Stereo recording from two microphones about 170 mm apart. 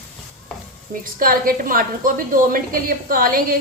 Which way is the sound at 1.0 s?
55° right (ahead or behind).